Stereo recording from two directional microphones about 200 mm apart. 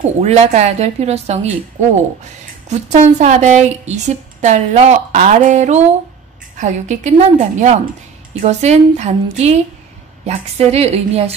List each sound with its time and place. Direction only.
0.0 s a woman's voice: 35° right (ahead or behind)